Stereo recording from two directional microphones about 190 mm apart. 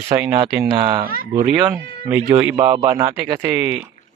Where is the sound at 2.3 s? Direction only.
10° right (ahead or behind).